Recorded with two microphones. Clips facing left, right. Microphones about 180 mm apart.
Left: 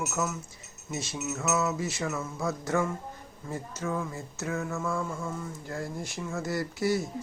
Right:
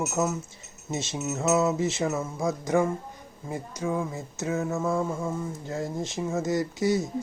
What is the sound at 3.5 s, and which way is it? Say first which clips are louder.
Speech: right 3 dB; 15° right (ahead or behind).